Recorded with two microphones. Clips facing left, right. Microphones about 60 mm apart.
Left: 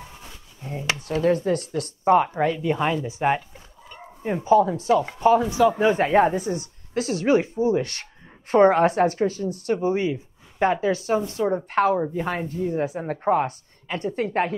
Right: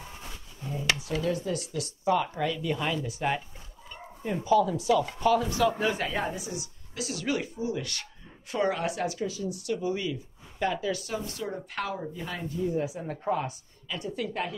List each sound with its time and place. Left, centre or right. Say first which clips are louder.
0.9 s a woman's voice: left 8 dB; left
3.9 s bow-wow: left 5 dB; left
4.4 s a woman's voice: left 6 dB; left
5.6 s speech: left 7 dB; centre
5.9 s a woman's voice: left 11 dB; left